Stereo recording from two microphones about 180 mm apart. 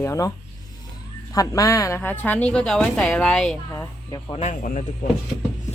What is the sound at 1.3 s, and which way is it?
Speech, 20° left (ahead or behind).